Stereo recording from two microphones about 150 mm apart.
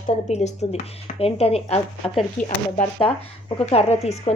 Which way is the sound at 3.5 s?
45° left (ahead or behind).